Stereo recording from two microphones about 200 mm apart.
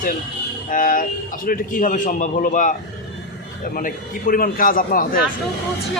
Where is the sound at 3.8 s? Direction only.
45° left (ahead or behind).